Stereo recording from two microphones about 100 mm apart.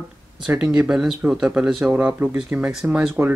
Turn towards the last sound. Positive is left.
turn(degrees=-10)  # may be behind; listen again after turning